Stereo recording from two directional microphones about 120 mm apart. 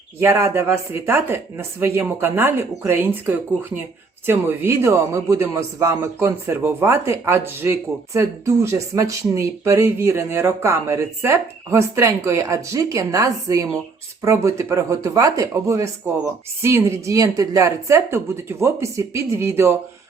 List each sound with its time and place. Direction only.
0.2 s a man's voice: 20° right (ahead or behind)